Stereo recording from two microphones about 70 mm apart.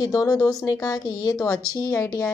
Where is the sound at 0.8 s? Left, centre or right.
Left.